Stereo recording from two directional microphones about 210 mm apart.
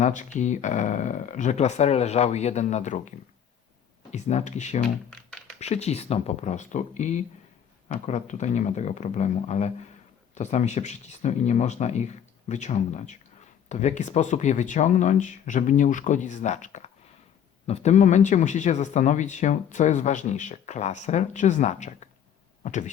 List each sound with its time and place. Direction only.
0.0 s speech: 35° left (ahead or behind)
4.1 s speech: 35° left (ahead or behind)
5.1 s typing: 5° left (ahead or behind)
5.5 s speech: 30° left (ahead or behind)